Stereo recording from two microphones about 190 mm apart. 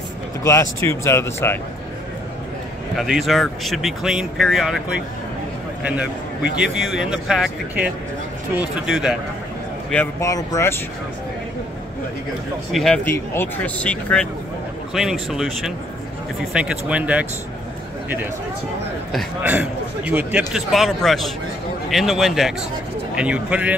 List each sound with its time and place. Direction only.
0.4 s speech: 15° left (ahead or behind)
3.0 s speech: centre (ahead or behind)
6.5 s speech: 5° right (ahead or behind)
10.2 s speech: 15° left (ahead or behind)
12.7 s a man's voice: 5° left (ahead or behind)
19.1 s a man's voice: 10° right (ahead or behind)